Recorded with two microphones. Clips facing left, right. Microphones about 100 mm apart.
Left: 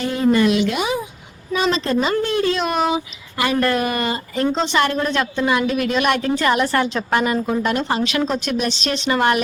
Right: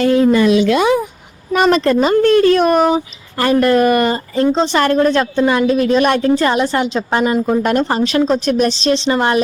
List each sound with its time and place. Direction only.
0.0 s speech: 90° right
1.5 s a woman's voice: 60° right (ahead or behind)
4.4 s a woman's voice: 35° right (ahead or behind)
7.4 s a woman's voice: 45° right (ahead or behind); by 9.4 s 25° right (ahead or behind)